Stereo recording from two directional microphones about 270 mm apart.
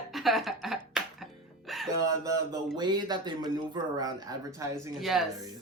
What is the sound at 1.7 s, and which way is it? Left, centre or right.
Music, centre.